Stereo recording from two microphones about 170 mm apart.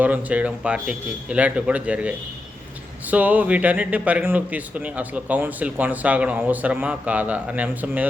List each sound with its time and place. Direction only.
0.0 s speech: 10° right (ahead or behind)